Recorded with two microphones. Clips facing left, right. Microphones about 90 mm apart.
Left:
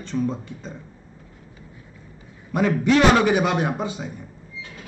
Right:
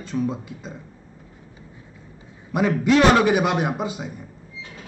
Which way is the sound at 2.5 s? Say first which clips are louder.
Even; 10° right (ahead or behind).